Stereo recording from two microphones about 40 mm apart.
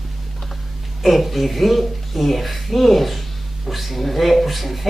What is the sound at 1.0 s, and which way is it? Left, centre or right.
Speech, centre.